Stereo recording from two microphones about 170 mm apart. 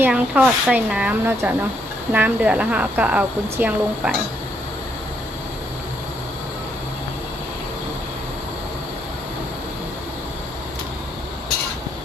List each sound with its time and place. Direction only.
0.0 s speech: 10° right (ahead or behind)